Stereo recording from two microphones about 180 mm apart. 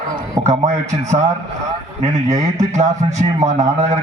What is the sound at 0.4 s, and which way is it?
A man's voice, 40° right (ahead or behind).